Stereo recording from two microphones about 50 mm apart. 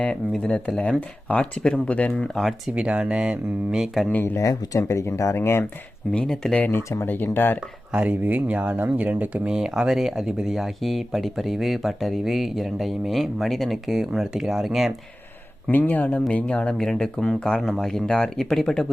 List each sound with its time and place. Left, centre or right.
0.1 s speech: left
2.3 s speech: centre
2.7 s speech: right
3.7 s speech: centre
4.4 s speech: left
6.1 s speech: centre
6.7 s speech: left
7.9 s speech: right
9.5 s speech: centre
15.7 s speech: left
16.3 s speech: left
16.7 s speech: centre